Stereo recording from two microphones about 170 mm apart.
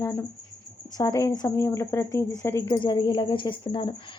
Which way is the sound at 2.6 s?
25° left (ahead or behind).